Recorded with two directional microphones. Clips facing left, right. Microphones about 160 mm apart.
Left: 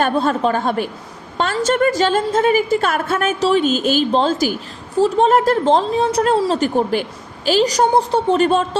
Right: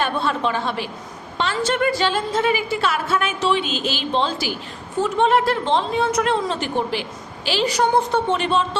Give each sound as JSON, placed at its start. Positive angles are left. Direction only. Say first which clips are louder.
{"t": 0.0, "sound": "a woman's voice", "louder": "left 5 dB", "side_deg": 40}